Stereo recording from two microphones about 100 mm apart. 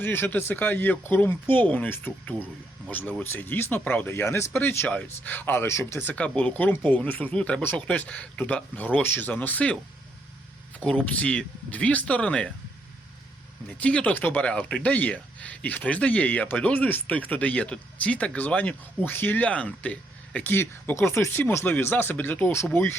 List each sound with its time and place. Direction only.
0.0 s speech: 20° left (ahead or behind)
11.1 s speech: 10° left (ahead or behind)
13.7 s speech: 10° left (ahead or behind)